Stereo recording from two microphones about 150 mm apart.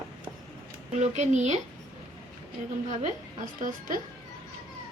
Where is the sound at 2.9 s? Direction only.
55° right (ahead or behind).